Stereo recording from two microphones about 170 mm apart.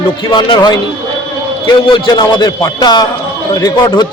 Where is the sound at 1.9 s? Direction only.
25° left (ahead or behind).